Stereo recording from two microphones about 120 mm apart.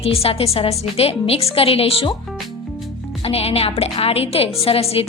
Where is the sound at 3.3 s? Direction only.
55° left (ahead or behind).